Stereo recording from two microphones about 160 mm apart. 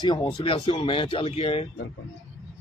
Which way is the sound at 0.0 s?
30° left (ahead or behind).